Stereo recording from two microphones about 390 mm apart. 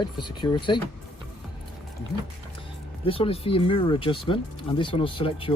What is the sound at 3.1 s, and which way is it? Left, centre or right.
Speech, centre.